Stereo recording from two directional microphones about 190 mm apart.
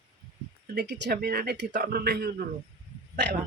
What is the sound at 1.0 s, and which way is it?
Speech, 55° right (ahead or behind).